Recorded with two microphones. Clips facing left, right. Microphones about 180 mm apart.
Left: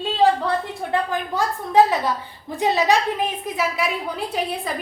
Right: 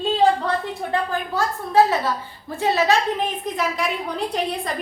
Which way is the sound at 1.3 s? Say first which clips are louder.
Left 1 dB; 15° left (ahead or behind).